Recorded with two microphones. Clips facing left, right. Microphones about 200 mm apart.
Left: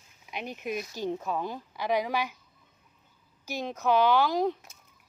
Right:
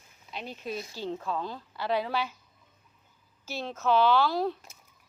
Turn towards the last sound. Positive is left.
turn(degrees=15)  # may be behind; listen again after turning